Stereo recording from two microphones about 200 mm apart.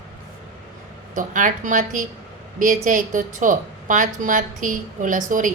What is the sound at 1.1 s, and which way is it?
A woman's voice, 40° right (ahead or behind).